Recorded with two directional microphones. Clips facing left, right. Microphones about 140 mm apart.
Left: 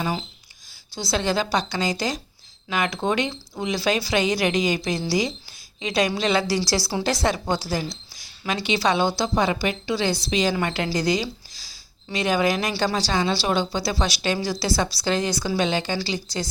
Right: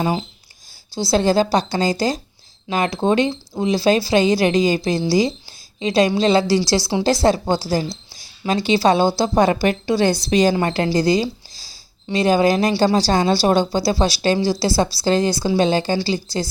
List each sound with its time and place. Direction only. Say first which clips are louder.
0.0 s speech: right 6 dB; 25° right (ahead or behind)